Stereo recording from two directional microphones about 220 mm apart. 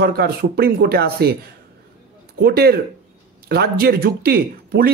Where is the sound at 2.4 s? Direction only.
45° right (ahead or behind).